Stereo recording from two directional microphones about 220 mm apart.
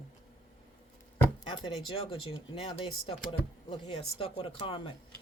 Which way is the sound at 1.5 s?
20° left (ahead or behind).